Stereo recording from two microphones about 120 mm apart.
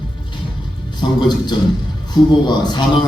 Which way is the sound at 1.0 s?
40° left (ahead or behind).